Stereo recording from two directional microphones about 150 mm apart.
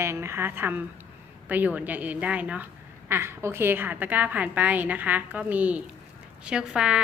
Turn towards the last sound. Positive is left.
turn(degrees=-5)  # may be behind; listen again after turning